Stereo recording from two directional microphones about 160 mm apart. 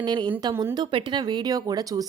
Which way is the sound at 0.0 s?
25° right (ahead or behind).